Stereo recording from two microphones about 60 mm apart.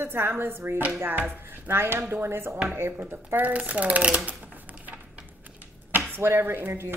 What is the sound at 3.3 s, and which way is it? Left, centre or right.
Speech, right.